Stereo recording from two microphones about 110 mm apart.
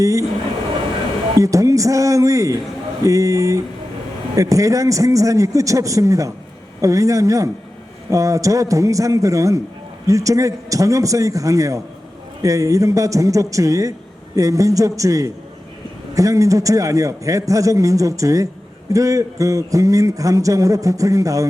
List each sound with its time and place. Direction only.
0.0 s speech: 30° right (ahead or behind)
1.4 s a man's voice: 30° right (ahead or behind)